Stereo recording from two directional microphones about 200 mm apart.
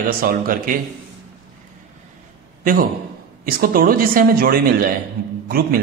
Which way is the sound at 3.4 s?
45° right (ahead or behind).